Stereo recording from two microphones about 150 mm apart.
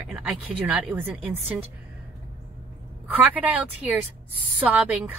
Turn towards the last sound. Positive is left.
turn(degrees=-10)  # may be behind; listen again after turning